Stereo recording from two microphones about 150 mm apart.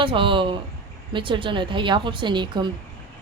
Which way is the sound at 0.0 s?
35° right (ahead or behind).